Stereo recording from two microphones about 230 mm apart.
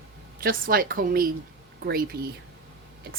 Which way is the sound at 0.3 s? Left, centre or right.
Right.